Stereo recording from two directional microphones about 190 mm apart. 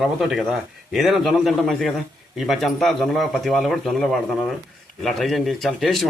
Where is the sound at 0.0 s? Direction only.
Centre (ahead or behind).